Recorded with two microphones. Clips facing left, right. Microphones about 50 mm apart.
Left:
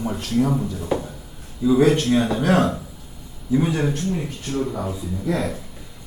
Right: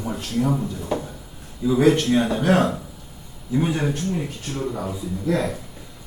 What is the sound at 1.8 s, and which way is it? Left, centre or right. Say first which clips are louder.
Speech: right 1 dB; right.